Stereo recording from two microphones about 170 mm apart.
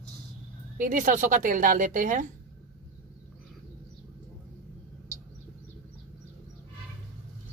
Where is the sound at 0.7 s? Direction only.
50° right (ahead or behind).